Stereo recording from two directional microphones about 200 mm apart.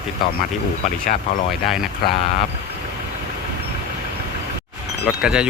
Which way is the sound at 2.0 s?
50° left (ahead or behind).